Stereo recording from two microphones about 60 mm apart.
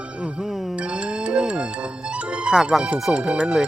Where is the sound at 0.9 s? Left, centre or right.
Centre.